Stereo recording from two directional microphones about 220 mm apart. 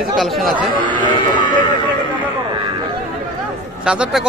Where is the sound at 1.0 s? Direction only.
20° left (ahead or behind).